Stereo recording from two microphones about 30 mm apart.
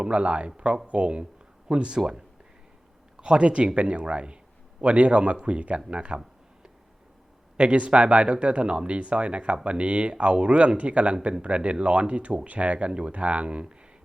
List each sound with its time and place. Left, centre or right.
0.0 s a man's voice: right
3.2 s a man's voice: right
7.5 s a man's voice: right